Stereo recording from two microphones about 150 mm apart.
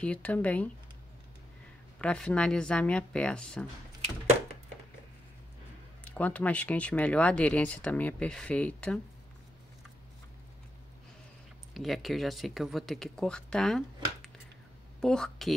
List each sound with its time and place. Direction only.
0.0 s speech: 10° left (ahead or behind)
2.0 s speech: 5° left (ahead or behind)
6.0 s speech: 10° left (ahead or behind)
11.7 s speech: centre (ahead or behind)
15.0 s a woman's voice: 5° left (ahead or behind)